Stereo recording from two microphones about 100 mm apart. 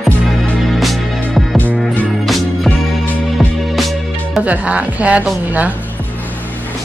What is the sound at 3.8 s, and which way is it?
Music, centre (ahead or behind).